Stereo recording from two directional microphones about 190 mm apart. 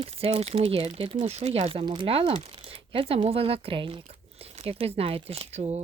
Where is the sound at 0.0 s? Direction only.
30° right (ahead or behind).